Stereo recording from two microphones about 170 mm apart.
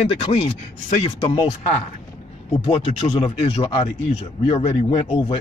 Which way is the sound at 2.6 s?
35° left (ahead or behind).